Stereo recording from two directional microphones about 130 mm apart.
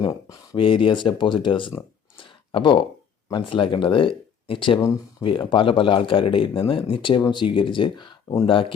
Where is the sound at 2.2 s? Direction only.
40° left (ahead or behind).